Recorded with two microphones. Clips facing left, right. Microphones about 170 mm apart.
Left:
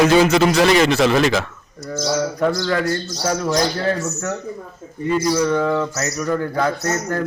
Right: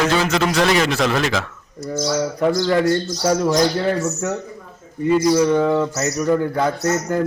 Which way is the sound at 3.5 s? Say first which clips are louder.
Right 2 dB; 15° right (ahead or behind).